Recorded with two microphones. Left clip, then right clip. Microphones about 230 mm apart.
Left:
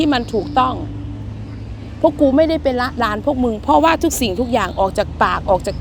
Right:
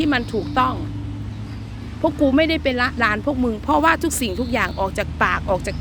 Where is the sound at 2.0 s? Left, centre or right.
Centre.